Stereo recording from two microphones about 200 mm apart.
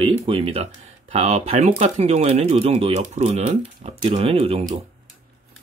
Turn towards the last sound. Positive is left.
turn(degrees=-30)  # may be behind; listen again after turning